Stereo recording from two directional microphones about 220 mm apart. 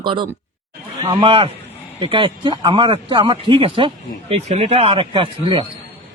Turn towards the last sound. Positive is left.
turn(degrees=-20)  # may be behind; listen again after turning